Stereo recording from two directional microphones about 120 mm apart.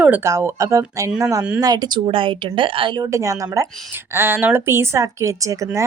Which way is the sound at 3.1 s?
25° right (ahead or behind).